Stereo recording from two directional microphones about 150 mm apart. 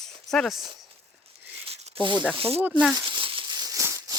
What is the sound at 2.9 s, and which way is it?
Crumpling, 35° right (ahead or behind).